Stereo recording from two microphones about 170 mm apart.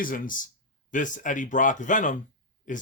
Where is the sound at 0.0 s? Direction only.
55° left (ahead or behind).